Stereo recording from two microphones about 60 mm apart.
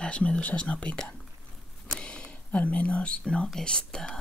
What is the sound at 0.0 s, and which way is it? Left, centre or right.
Speech, centre.